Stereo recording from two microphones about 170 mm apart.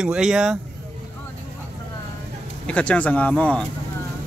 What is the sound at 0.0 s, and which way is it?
Speech, 5° right (ahead or behind).